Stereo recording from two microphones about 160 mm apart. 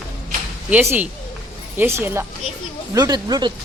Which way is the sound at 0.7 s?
15° right (ahead or behind).